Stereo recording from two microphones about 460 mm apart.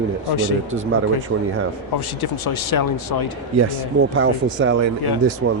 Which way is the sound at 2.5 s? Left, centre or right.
Left.